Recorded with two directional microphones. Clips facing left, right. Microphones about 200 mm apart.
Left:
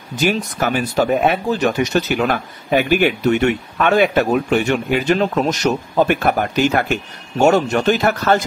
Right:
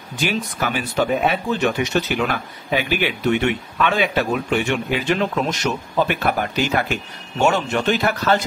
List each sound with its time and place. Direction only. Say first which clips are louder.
0.2 s speech: left 4 dB; 45° left (ahead or behind)